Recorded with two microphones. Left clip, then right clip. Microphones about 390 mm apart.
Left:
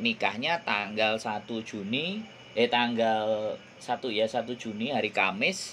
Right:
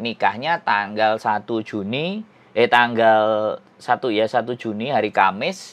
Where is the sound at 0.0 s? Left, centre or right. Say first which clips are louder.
Right 7 dB; right.